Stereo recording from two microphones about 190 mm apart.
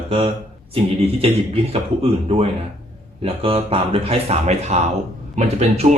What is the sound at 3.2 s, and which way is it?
Speech, 30° right (ahead or behind).